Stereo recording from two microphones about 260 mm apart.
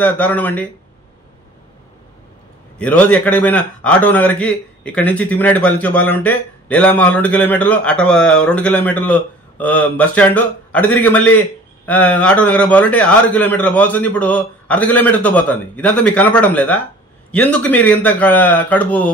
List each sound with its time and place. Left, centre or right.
0.0 s speech: centre
2.8 s a man's voice: centre